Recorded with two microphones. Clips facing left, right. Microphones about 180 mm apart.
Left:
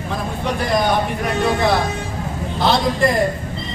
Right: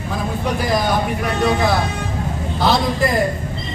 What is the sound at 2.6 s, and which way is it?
Speech, centre (ahead or behind).